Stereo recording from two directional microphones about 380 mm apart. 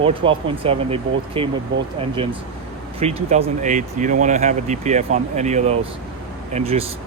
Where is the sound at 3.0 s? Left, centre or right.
Centre.